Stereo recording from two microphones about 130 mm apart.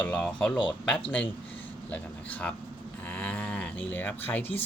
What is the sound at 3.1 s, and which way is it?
Livestock, 10° left (ahead or behind).